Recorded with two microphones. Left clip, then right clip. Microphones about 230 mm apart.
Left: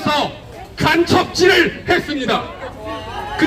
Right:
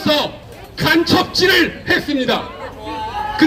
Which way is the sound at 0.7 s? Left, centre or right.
Right.